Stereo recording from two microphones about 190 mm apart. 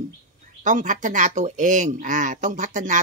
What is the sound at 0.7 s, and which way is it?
Speech, 40° right (ahead or behind).